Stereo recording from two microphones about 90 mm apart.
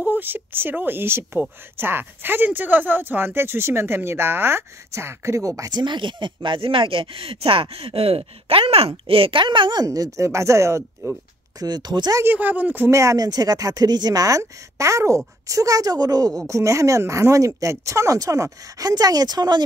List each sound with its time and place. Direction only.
0.0 s speech: 20° right (ahead or behind); by 5.8 s 40° right (ahead or behind)
5.8 s speech: 60° right (ahead or behind)
9.8 s speech: 40° right (ahead or behind)
11.6 s speech: 50° right (ahead or behind)
12.2 s speech: 20° right (ahead or behind)
12.9 s speech: 40° right (ahead or behind)